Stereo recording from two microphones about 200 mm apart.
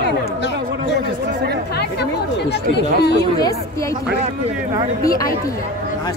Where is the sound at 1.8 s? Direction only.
55° left (ahead or behind).